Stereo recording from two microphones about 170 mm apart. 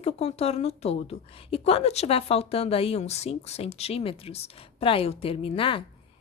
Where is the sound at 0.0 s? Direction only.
40° left (ahead or behind).